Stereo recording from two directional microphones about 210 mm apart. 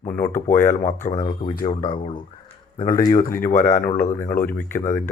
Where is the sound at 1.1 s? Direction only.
25° left (ahead or behind); by 4.8 s 10° left (ahead or behind).